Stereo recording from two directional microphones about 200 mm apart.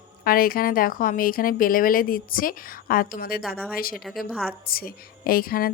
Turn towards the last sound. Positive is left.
turn(degrees=45)  # may be behind; listen again after turning